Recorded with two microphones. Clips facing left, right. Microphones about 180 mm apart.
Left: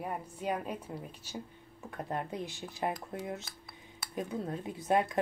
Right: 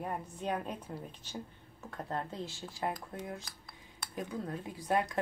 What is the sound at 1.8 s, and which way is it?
Speech, 15° left (ahead or behind).